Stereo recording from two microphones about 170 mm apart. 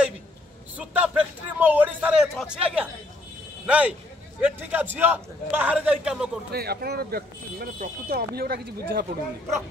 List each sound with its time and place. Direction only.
0.7 s a man's voice: 10° right (ahead or behind)
6.5 s speech: 70° right (ahead or behind)